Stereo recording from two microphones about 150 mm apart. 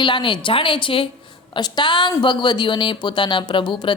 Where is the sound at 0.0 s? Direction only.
30° left (ahead or behind).